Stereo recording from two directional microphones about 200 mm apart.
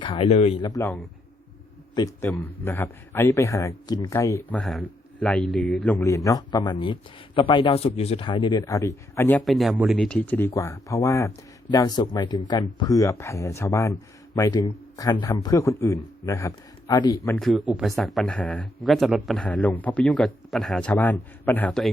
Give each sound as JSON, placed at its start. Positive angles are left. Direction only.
{"t": 0.0, "sound": "speech", "side_deg": 25}
{"t": 0.8, "sound": "a man's voice", "side_deg": 10}
{"t": 9.4, "sound": "a man's voice", "side_deg": 0}
{"t": 17.4, "sound": "speech", "side_deg": 0}